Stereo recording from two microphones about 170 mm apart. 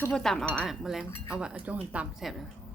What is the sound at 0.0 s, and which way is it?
Speech, 5° left (ahead or behind).